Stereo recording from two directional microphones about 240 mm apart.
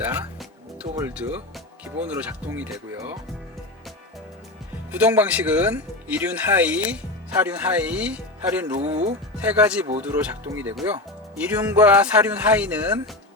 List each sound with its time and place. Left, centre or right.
0.0 s speech: centre
4.9 s speech: centre
8.8 s speech: right
9.4 s speech: centre